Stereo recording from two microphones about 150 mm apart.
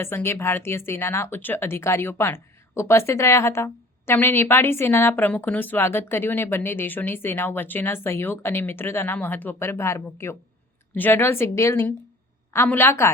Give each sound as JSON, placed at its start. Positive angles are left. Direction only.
{"t": 0.0, "sound": "speech", "side_deg": 15}